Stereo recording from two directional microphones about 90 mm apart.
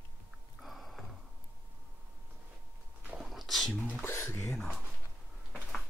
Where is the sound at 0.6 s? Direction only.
Centre (ahead or behind).